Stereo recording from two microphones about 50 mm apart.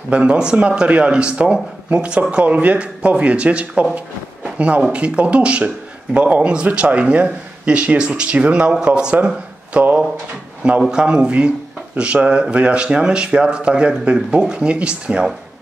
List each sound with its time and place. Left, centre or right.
0.1 s a man's voice: right
9.8 s speech: right
10.9 s a man's voice: centre